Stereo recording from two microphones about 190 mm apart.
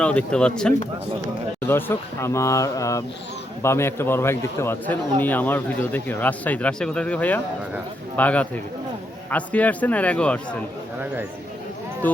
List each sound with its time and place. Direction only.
0.0 s speech: 5° left (ahead or behind)
12.0 s speech: 10° left (ahead or behind)